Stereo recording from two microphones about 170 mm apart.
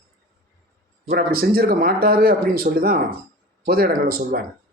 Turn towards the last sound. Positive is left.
turn(degrees=-55)  # may be behind; listen again after turning